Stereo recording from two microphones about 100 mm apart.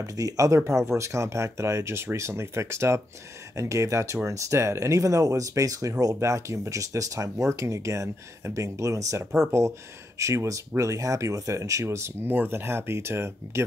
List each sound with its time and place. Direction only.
0.0 s speech: 35° right (ahead or behind)